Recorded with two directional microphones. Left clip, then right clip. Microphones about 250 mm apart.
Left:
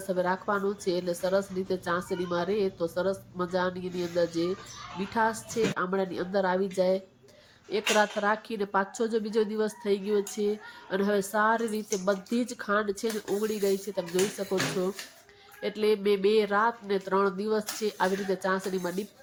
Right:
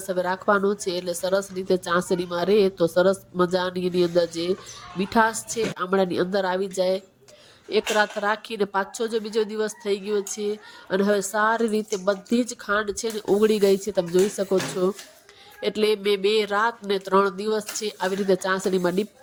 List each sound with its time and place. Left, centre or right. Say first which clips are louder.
0.1 s a woman's voice: right 6 dB; right